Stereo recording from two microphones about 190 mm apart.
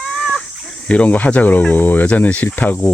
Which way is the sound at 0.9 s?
5° left (ahead or behind).